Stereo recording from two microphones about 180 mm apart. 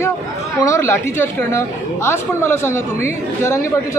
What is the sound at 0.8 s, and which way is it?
A woman's voice, 10° left (ahead or behind).